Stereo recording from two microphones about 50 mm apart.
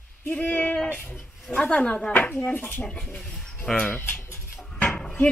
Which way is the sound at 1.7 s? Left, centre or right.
Left.